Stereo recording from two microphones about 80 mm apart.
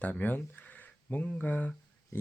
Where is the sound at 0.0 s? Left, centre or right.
Left.